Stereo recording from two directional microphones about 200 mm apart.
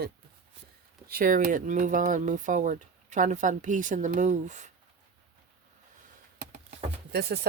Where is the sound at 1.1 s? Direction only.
45° right (ahead or behind).